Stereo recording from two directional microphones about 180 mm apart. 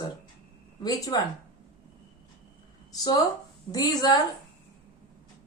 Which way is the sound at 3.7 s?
20° left (ahead or behind).